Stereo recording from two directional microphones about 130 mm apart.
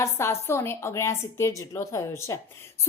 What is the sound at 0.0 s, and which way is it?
A woman's voice, 20° left (ahead or behind).